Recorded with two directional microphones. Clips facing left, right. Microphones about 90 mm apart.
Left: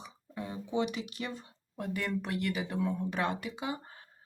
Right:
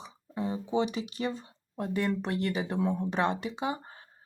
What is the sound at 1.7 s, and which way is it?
Speech, 30° right (ahead or behind).